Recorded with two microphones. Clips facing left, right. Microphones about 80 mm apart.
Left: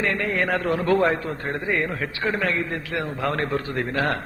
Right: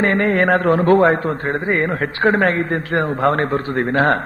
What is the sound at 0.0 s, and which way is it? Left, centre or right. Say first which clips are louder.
A man's voice: right 8 dB; right.